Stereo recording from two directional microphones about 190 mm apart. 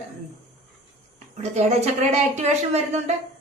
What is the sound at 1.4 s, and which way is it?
A woman's voice, 35° right (ahead or behind).